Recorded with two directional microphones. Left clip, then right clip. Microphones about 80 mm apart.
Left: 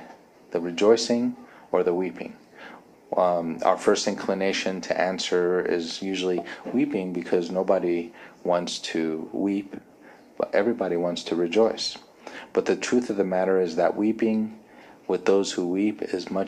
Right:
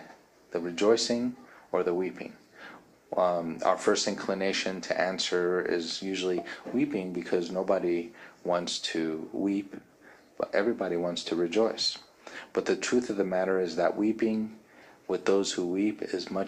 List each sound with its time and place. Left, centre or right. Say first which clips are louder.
0.5 s speech: left 5 dB; left